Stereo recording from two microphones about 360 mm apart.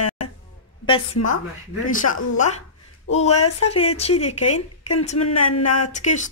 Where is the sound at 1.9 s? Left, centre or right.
Left.